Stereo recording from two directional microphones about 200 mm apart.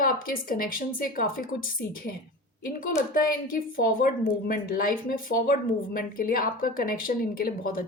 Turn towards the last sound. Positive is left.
turn(degrees=45)  # may be behind; listen again after turning